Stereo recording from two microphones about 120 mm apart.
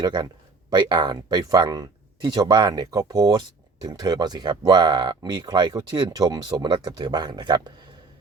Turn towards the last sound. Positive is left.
turn(degrees=-35)  # may be behind; listen again after turning